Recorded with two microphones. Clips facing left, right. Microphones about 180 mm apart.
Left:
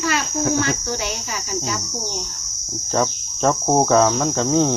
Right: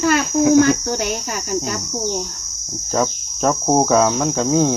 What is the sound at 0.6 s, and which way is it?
Cricket, 50° right (ahead or behind).